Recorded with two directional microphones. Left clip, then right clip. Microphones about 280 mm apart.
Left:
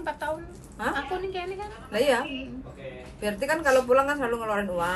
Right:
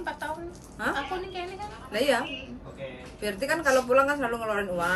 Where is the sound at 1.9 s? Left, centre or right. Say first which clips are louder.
Left 2 dB; centre.